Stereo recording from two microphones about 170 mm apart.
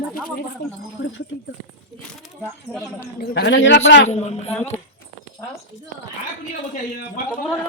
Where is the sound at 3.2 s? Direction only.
80° left.